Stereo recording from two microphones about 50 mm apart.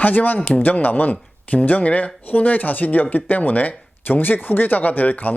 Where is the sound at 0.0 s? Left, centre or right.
Left.